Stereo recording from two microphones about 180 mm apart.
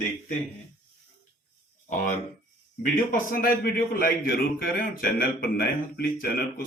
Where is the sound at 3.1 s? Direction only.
50° left (ahead or behind).